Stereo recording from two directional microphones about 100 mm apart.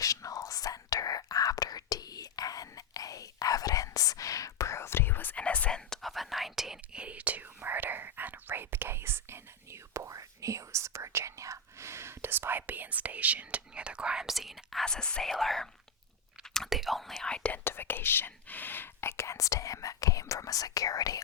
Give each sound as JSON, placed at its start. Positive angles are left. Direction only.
{"t": 0.0, "sound": "whispering", "side_deg": 35}